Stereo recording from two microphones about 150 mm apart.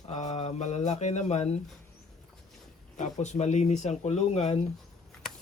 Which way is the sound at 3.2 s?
50° left (ahead or behind).